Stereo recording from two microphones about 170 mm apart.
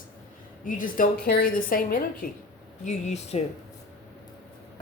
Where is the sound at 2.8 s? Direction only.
40° left (ahead or behind).